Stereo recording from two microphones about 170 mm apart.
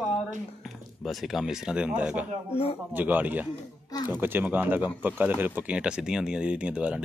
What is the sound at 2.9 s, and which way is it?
Speech, 10° right (ahead or behind).